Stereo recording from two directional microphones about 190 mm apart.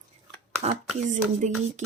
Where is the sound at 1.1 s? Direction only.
40° right (ahead or behind).